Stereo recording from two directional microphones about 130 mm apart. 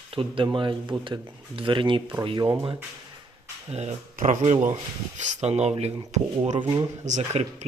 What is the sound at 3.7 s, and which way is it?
Speech, 60° right (ahead or behind).